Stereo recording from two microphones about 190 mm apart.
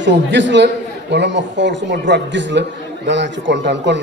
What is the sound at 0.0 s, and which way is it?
A man's voice, 70° right (ahead or behind).